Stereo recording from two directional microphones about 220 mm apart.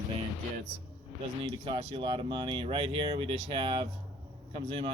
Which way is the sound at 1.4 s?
20° right (ahead or behind).